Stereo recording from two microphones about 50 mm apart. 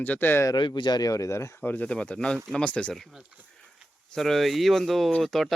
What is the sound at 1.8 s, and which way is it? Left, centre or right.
Speech, left.